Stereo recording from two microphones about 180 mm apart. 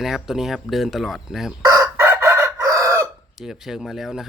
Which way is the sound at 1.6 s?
20° right (ahead or behind).